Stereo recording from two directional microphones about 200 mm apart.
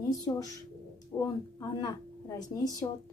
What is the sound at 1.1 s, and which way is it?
A woman's voice, 15° left (ahead or behind).